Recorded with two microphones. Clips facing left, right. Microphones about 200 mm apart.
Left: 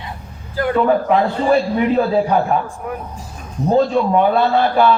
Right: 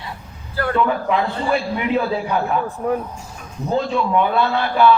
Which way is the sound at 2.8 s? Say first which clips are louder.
Right 6 dB; 30° right (ahead or behind).